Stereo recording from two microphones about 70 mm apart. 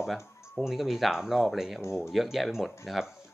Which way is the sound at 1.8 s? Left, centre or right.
Left.